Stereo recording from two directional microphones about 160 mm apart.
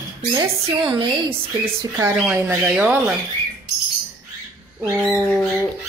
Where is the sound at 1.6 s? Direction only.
15° right (ahead or behind).